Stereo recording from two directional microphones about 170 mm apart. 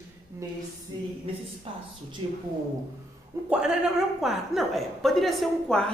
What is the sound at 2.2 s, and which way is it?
Speech, 30° right (ahead or behind).